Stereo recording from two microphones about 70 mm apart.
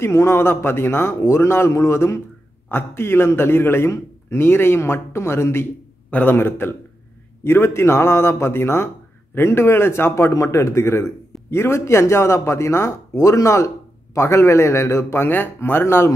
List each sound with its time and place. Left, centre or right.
0.0 s a man's voice: left
6.0 s a man's voice: left
6.3 s a man's voice: left
10.3 s a man's voice: left